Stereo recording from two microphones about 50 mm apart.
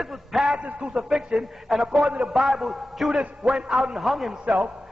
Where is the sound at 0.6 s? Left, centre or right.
Right.